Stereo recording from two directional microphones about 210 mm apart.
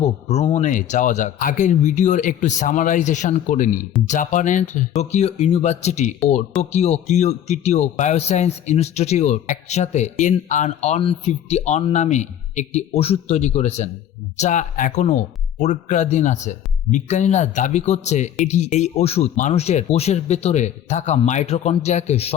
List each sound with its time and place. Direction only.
0.3 s a man's voice: 30° left (ahead or behind)